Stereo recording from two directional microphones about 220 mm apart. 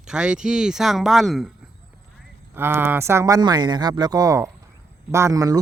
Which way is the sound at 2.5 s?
10° right (ahead or behind).